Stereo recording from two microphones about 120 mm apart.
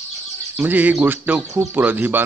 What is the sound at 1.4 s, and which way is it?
Speech, 25° right (ahead or behind).